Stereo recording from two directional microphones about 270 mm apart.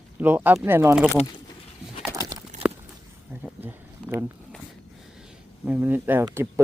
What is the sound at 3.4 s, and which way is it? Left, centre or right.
Speech, centre.